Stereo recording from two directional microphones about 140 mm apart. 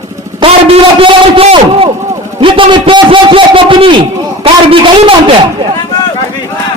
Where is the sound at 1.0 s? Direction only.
40° right (ahead or behind).